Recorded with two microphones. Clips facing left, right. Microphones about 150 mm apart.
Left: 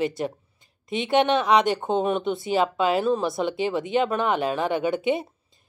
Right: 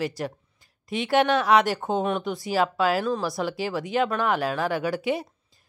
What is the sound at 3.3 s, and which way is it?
A woman's voice, centre (ahead or behind).